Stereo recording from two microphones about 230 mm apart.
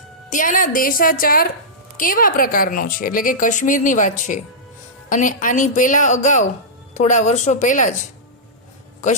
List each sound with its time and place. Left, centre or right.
0.3 s a woman's voice: left